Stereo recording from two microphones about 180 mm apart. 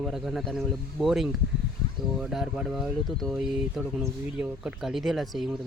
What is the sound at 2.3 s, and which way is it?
Speech, centre (ahead or behind).